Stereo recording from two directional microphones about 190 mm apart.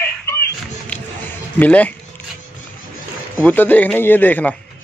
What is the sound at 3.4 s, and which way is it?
A man's voice, 10° left (ahead or behind).